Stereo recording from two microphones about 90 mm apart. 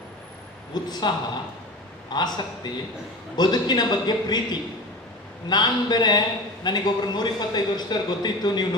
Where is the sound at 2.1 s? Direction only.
50° left (ahead or behind).